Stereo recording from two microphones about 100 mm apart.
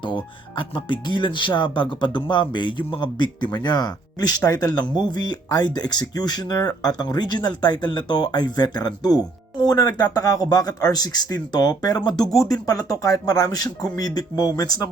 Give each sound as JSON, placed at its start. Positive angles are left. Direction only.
{"t": 0.0, "sound": "speech", "side_deg": 55}